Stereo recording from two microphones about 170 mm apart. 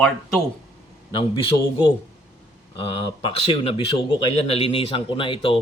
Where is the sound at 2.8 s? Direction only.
30° left (ahead or behind).